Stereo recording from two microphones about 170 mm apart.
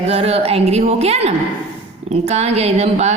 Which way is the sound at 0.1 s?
35° right (ahead or behind).